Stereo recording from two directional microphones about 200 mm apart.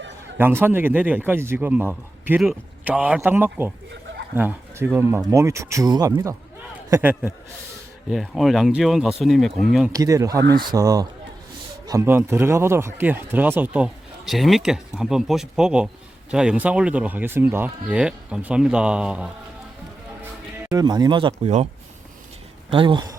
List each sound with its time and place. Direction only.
0.3 s speech: 10° right (ahead or behind)
9.9 s speech: 15° right (ahead or behind)
20.7 s speech: 20° right (ahead or behind)
22.7 s speech: 25° right (ahead or behind)